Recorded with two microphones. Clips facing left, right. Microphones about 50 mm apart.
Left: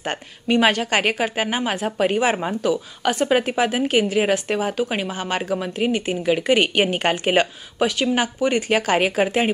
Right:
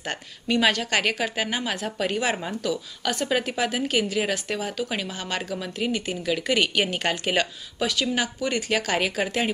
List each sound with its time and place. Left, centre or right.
0.0 s a woman's voice: left